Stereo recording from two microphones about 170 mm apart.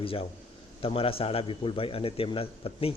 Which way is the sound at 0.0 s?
35° left (ahead or behind).